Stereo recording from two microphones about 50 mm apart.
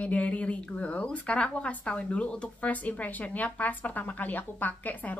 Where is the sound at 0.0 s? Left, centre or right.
Left.